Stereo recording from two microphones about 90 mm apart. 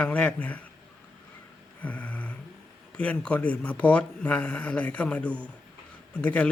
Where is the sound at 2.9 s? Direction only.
15° left (ahead or behind).